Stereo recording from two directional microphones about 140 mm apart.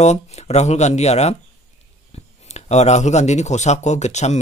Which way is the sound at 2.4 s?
55° left (ahead or behind).